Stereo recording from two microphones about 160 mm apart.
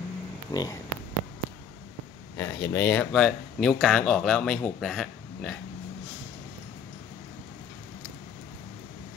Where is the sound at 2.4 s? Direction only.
15° left (ahead or behind); by 5.5 s centre (ahead or behind).